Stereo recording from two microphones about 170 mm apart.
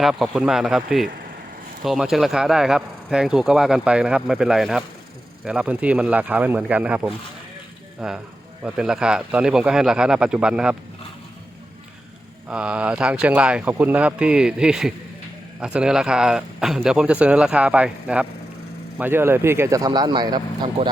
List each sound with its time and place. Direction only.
0.0 s speech: centre (ahead or behind)
12.5 s speech: 5° right (ahead or behind); by 20.9 s 25° right (ahead or behind)